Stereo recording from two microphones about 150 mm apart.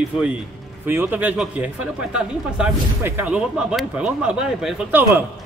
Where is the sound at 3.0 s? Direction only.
15° right (ahead or behind).